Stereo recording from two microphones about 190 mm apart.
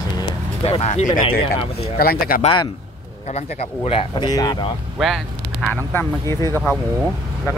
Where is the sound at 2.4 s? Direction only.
25° left (ahead or behind).